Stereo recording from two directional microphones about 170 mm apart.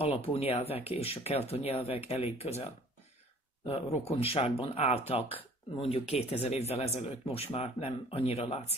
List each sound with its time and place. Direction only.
0.2 s speech: 35° left (ahead or behind)